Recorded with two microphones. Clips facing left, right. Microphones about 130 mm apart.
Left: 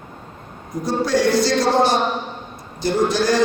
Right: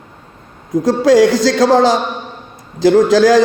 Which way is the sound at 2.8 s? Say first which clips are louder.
Right 9 dB; 90° right.